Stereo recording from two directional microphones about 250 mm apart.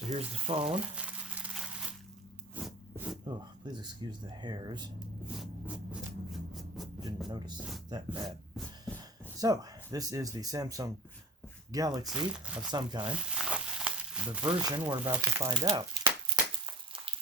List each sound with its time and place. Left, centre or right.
0.1 s speech: right
0.9 s a sound: centre
3.2 s speech: centre
5.4 s a sound: centre
7.3 s speech: centre
8.1 s a sound: centre
9.4 s speech: centre
12.0 s speech: centre
12.7 s speech: centre
13.3 s a sound: centre
14.6 s speech: centre
16.3 s crushing: centre